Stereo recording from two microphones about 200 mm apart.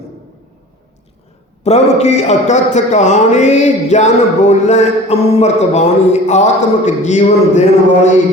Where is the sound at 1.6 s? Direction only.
35° left (ahead or behind).